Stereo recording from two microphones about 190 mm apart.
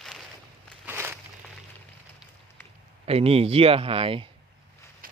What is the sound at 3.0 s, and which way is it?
A man's voice, 30° right (ahead or behind).